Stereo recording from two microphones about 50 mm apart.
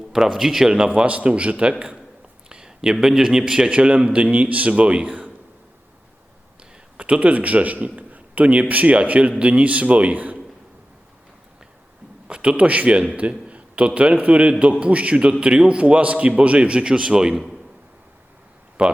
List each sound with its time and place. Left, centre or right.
0.1 s a man's voice: centre
0.9 s a man's voice: right
6.9 s a man's voice: right
12.3 s a man's voice: right
18.8 s a man's voice: right